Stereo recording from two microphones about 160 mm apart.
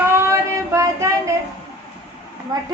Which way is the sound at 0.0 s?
20° right (ahead or behind).